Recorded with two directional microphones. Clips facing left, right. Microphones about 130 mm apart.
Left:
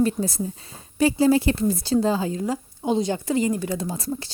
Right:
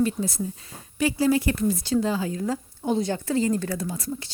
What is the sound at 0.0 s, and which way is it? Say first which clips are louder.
Speech: left 2 dB; 35° left (ahead or behind).